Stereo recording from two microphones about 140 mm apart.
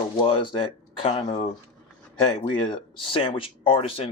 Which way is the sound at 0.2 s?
40° left (ahead or behind).